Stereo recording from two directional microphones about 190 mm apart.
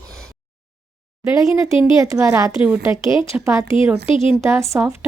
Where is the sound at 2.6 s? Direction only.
5° right (ahead or behind).